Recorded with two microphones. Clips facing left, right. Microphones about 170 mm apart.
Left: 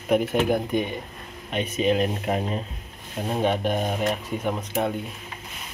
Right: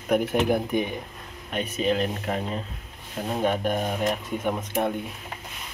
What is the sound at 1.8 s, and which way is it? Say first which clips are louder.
Speech: left 3 dB; 10° left (ahead or behind).